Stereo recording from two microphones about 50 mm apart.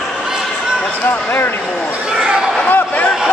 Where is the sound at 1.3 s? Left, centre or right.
Left.